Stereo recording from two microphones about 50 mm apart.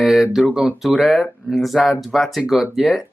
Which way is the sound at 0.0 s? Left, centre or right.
Centre.